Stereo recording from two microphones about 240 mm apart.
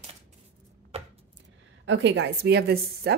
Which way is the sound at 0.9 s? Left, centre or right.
Right.